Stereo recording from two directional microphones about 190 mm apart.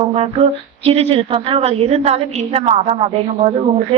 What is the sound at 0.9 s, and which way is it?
A woman's voice, 30° right (ahead or behind).